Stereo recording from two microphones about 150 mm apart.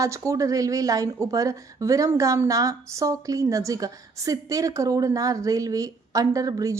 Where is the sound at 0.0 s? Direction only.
20° right (ahead or behind).